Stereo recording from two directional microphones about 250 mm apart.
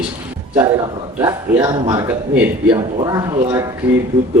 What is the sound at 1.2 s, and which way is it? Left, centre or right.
A man's voice, centre.